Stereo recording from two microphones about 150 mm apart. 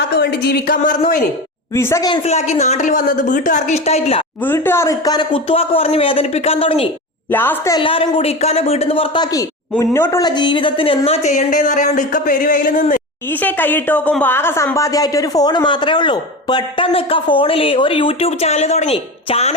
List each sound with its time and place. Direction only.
0.2 s a woman's voice: 90° left; by 1.2 s 65° left (ahead or behind)
1.7 s a woman's voice: 20° left (ahead or behind)
2.2 s a woman's voice: 50° left (ahead or behind)
4.4 s speech: 15° left (ahead or behind); by 6.8 s 40° left (ahead or behind)
7.3 s a woman's voice: 15° left (ahead or behind)
7.8 s speech: 35° left (ahead or behind)
9.7 s a woman's voice: 15° left (ahead or behind); by 13.0 s 60° left (ahead or behind)
13.4 s speech: 10° left (ahead or behind); by 19.5 s 45° left (ahead or behind)